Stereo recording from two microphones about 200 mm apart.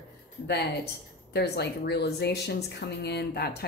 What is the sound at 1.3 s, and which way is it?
Speech, 55° left (ahead or behind).